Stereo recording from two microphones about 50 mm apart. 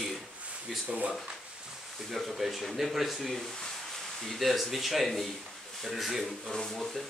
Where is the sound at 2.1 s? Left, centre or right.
Centre.